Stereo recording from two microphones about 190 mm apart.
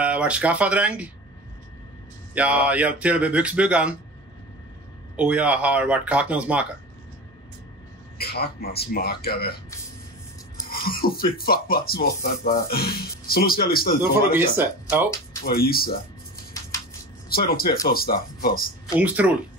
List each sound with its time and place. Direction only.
0.0 s speech: 5° right (ahead or behind)
2.3 s speech: 5° right (ahead or behind)
5.1 s speech: 5° right (ahead or behind)
8.2 s speech: 55° left (ahead or behind)
10.7 s speech: 50° left (ahead or behind)
14.3 s speech: 10° right (ahead or behind)
15.4 s speech: 50° left (ahead or behind)
17.3 s speech: 50° left (ahead or behind)
18.9 s speech: 10° right (ahead or behind)